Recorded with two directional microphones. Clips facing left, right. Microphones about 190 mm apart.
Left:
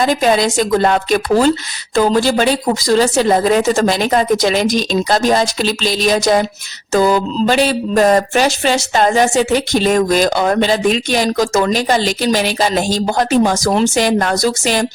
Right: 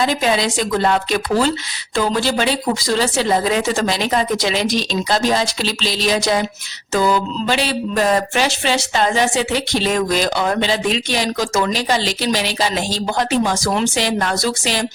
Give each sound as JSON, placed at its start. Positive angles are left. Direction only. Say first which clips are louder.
{"t": 0.0, "sound": "speech", "louder": "left 4 dB", "side_deg": 45}